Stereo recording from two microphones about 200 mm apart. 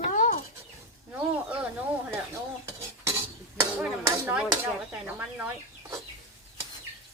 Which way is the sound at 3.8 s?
10° right (ahead or behind).